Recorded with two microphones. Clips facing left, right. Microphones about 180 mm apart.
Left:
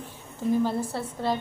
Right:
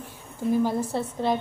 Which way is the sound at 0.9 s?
20° right (ahead or behind).